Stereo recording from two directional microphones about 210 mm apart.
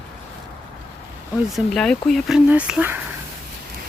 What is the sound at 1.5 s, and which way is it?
Speech, centre (ahead or behind).